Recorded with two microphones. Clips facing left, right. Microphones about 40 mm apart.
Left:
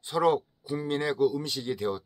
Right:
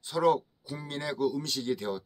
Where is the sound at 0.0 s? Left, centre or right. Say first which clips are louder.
Left 1 dB; centre.